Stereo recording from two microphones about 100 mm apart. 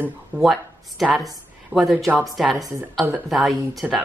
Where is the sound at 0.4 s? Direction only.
Centre (ahead or behind).